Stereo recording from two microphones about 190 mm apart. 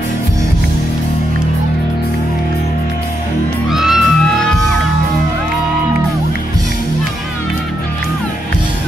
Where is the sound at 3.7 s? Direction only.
Centre (ahead or behind).